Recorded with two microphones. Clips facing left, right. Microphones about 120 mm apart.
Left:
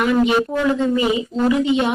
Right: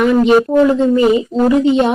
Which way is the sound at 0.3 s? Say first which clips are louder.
Right 8 dB; 40° right (ahead or behind).